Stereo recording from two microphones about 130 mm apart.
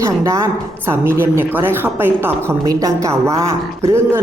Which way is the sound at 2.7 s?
25° right (ahead or behind).